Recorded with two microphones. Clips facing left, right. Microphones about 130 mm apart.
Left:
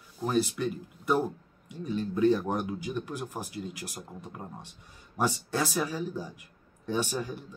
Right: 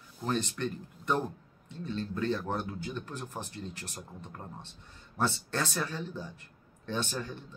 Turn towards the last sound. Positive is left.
turn(degrees=10)  # may be behind; listen again after turning